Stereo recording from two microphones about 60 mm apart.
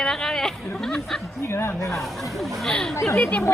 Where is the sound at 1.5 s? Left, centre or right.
Left.